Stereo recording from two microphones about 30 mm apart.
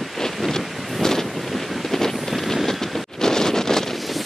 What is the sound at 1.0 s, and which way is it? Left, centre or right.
Vehicle, centre.